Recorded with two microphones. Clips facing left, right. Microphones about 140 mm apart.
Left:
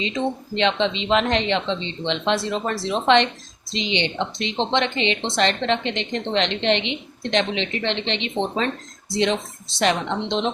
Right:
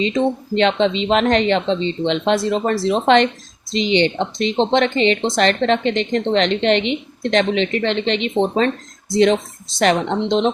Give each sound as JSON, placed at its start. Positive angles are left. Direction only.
{"t": 0.5, "sound": "a woman's voice", "side_deg": -40}